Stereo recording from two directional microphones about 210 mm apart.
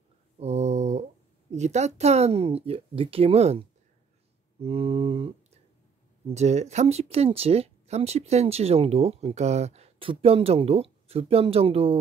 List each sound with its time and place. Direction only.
0.4 s a sound: 30° right (ahead or behind)
1.5 s speech: 35° right (ahead or behind)
4.6 s mantra: 30° right (ahead or behind)
6.2 s speech: 30° right (ahead or behind)